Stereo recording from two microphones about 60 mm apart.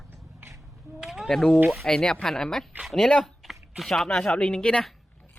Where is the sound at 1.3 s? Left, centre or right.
Centre.